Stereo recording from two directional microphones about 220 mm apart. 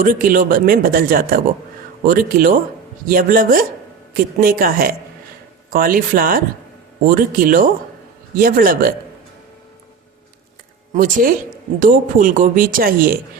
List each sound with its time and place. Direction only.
0.0 s speech: 40° right (ahead or behind)
10.9 s speech: 40° right (ahead or behind)